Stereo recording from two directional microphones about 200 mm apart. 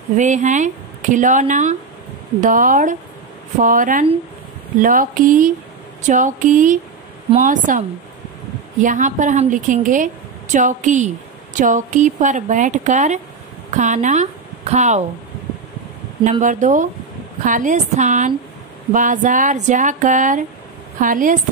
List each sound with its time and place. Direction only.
0.2 s speech: 40° right (ahead or behind)
8.8 s a woman's voice: 40° right (ahead or behind)
16.3 s speech: 40° right (ahead or behind)